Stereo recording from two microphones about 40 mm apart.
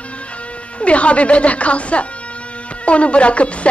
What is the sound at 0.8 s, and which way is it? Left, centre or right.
A woman's voice, left.